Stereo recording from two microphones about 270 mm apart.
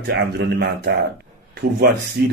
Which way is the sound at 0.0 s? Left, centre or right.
Right.